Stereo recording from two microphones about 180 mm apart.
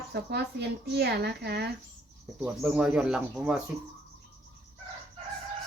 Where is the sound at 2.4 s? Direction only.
10° right (ahead or behind).